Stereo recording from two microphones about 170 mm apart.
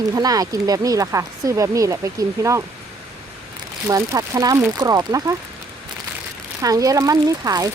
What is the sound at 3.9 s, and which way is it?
Speech, 20° right (ahead or behind).